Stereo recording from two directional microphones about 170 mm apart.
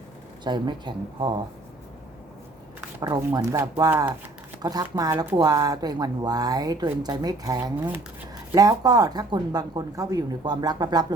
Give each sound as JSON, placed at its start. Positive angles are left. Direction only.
{"t": 0.4, "sound": "speech", "side_deg": -25}
{"t": 3.0, "sound": "speech", "side_deg": -25}